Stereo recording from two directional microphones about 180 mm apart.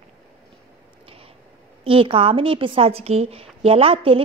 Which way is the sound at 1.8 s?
30° right (ahead or behind).